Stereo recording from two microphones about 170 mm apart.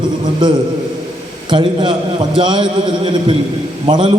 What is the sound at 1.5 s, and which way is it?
A man's voice, 30° right (ahead or behind).